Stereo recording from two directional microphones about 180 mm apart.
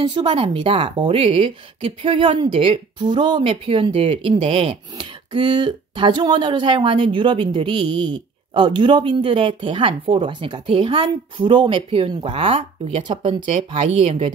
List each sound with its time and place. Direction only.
0.0 s speech: 25° right (ahead or behind)